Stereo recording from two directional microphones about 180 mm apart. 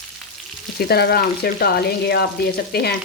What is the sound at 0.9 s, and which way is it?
Frying, 60° left (ahead or behind).